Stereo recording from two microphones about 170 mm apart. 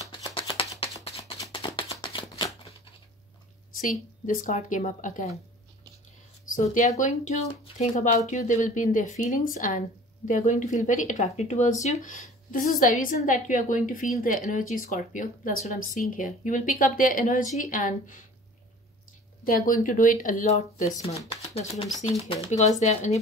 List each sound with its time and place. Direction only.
0.0 s a sound: 30° left (ahead or behind)
1.1 s shuffling cards: 25° left (ahead or behind)
3.8 s a woman's voice: 50° left (ahead or behind)
6.4 s a woman's voice: 50° left (ahead or behind)
19.4 s a woman's voice: 55° left (ahead or behind)